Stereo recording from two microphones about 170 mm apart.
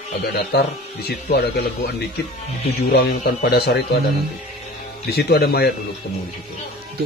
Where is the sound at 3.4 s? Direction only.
70° left (ahead or behind).